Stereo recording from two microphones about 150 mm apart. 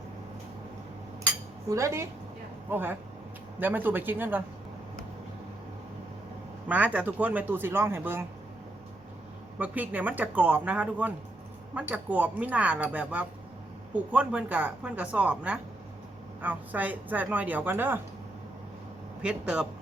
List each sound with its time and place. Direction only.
1.7 s a woman's voice: 20° right (ahead or behind)
6.7 s speech: 10° right (ahead or behind)
9.6 s speech: 10° right (ahead or behind)
19.2 s speech: 5° right (ahead or behind)